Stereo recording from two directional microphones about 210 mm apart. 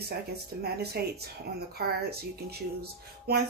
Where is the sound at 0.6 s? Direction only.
50° right (ahead or behind).